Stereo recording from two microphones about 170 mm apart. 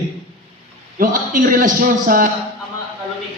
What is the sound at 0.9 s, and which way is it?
A man's voice, 55° right (ahead or behind).